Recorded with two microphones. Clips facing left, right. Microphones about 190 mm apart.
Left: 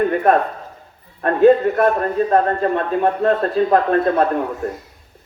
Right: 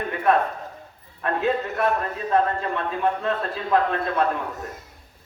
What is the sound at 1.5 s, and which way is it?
A man's voice, 45° left (ahead or behind).